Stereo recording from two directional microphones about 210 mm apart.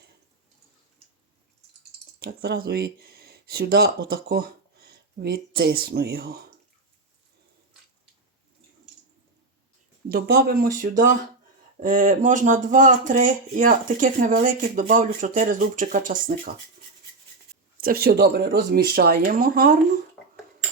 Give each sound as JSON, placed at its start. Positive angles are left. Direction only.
{"t": 2.1, "sound": "speech", "side_deg": -50}
{"t": 10.1, "sound": "speech", "side_deg": -50}
{"t": 17.7, "sound": "speech", "side_deg": -45}